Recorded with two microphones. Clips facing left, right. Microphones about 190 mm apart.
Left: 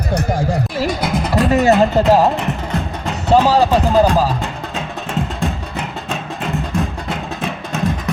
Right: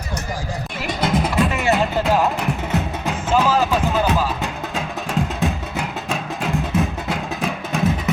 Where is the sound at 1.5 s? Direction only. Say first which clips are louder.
Left 8 dB; 40° left (ahead or behind).